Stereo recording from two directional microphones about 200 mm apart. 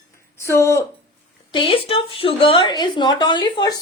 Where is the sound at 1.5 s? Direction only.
25° left (ahead or behind).